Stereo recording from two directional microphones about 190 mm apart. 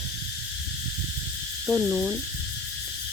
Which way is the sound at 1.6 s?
5° left (ahead or behind).